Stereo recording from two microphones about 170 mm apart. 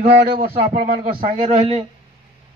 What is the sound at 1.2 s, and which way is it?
Speech, 45° right (ahead or behind).